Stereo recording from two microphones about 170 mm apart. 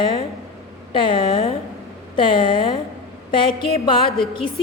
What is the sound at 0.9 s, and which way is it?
A woman's voice, 30° left (ahead or behind).